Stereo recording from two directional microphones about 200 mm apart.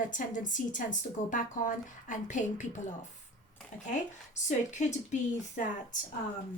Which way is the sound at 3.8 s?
35° left (ahead or behind).